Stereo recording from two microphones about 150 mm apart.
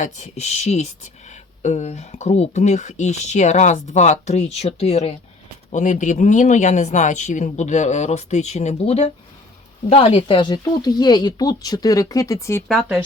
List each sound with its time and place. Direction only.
0.0 s speech: 50° left (ahead or behind)
5.7 s speech: 55° left (ahead or behind); by 12.6 s 20° left (ahead or behind)